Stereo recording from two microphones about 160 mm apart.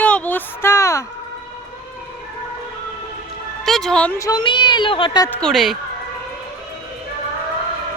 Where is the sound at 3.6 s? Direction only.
Centre (ahead or behind).